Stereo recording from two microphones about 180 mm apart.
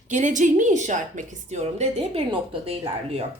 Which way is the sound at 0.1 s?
45° right (ahead or behind).